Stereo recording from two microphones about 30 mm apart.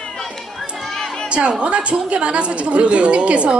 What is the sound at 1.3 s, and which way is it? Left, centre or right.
A woman's voice, right.